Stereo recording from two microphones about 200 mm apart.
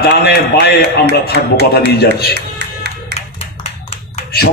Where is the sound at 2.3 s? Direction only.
55° right (ahead or behind).